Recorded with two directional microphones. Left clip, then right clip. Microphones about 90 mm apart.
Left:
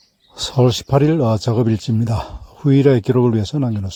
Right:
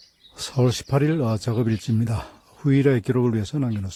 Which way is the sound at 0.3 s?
25° left (ahead or behind).